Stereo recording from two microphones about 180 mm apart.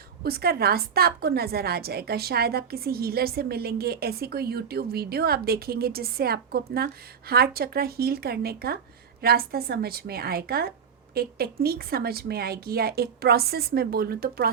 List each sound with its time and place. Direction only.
0.2 s a woman's voice: 60° right (ahead or behind)